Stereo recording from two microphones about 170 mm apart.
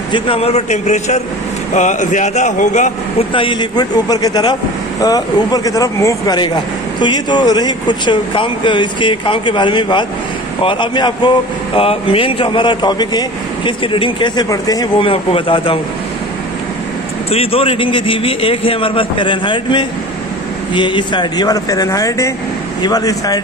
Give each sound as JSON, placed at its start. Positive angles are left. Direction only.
{"t": 0.1, "sound": "a man's voice", "side_deg": 35}
{"t": 3.3, "sound": "a man's voice", "side_deg": 25}
{"t": 17.3, "sound": "a man's voice", "side_deg": 35}